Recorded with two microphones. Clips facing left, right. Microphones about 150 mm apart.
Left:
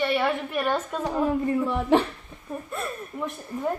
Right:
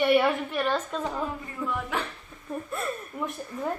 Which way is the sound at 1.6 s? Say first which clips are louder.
Left 7 dB; 30° left (ahead or behind).